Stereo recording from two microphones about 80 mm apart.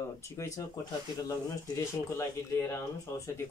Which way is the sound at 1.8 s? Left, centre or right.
Left.